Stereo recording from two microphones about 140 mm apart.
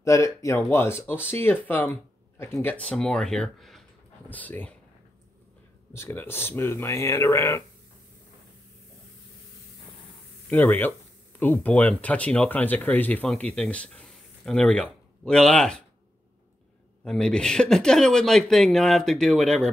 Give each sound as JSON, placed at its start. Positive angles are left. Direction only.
{"t": 0.0, "sound": "speech", "side_deg": 20}
{"t": 4.3, "sound": "speech", "side_deg": 10}
{"t": 5.9, "sound": "speech", "side_deg": 15}
{"t": 10.5, "sound": "speech", "side_deg": 15}
{"t": 17.0, "sound": "speech", "side_deg": 5}